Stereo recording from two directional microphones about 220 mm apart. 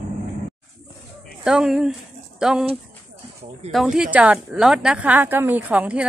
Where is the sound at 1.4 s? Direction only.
Centre (ahead or behind).